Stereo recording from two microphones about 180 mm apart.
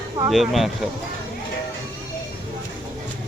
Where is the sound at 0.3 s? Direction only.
Centre (ahead or behind).